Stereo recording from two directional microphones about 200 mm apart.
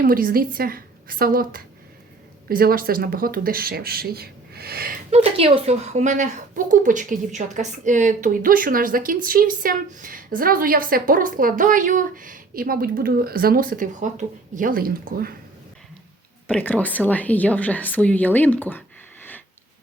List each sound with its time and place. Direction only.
0.0 s speech: 45° right (ahead or behind)
5.1 s speech: 30° right (ahead or behind)
16.5 s speech: 10° left (ahead or behind)